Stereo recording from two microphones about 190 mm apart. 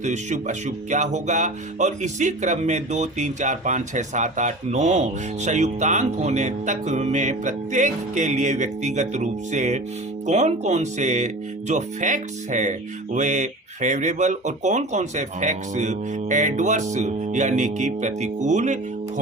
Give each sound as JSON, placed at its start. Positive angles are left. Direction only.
{"t": 0.0, "sound": "speech", "side_deg": -40}